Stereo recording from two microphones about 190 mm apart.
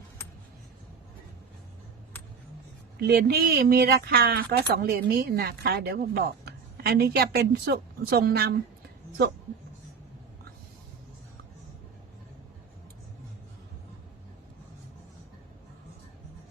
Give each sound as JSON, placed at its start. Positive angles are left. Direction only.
{"t": 3.0, "sound": "speech", "side_deg": -60}